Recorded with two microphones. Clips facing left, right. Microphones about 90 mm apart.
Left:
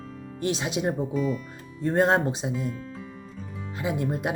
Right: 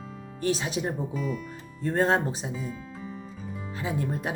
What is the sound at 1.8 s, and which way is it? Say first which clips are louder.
Speech: left 2 dB; 20° left (ahead or behind).